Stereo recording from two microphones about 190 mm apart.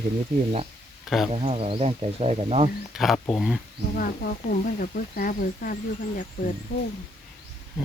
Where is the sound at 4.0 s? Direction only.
45° left (ahead or behind).